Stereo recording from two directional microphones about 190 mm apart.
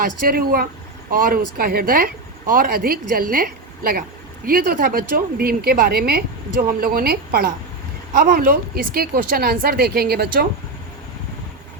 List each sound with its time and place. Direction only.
0.0 s speech: 50° right (ahead or behind)